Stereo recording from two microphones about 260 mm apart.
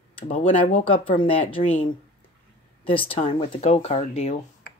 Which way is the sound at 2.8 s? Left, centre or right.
Left.